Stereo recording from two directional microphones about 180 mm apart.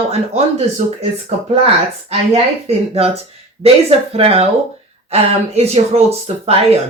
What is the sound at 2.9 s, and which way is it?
Speech, 35° right (ahead or behind).